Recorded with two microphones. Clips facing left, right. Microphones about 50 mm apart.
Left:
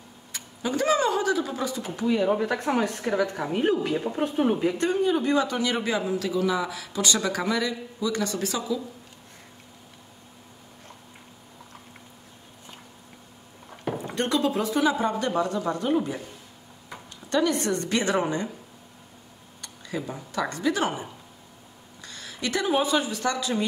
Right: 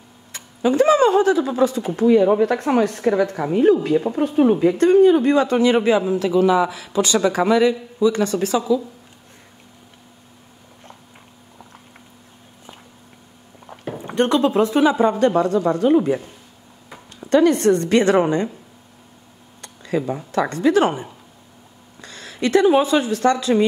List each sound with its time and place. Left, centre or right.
0.7 s a man's voice: right
2.5 s a woman's voice: right
3.0 s a man's voice: right
4.1 s a woman's voice: right
14.0 s a man's voice: right
17.3 s a woman's voice: right
19.6 s speech: right
22.0 s a sound: right
22.8 s a man's voice: right